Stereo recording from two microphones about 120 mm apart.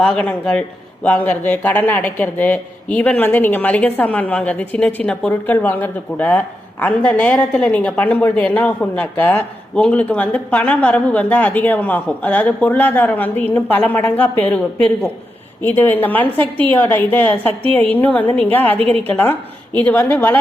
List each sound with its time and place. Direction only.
0.0 s speech: 5° left (ahead or behind)